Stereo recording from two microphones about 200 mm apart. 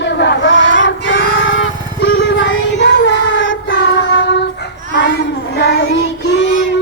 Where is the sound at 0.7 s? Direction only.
65° left (ahead or behind).